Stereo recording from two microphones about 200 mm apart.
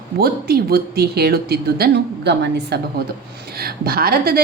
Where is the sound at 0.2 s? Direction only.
50° right (ahead or behind).